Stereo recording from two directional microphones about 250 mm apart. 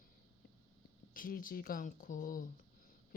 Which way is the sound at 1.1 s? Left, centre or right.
Left.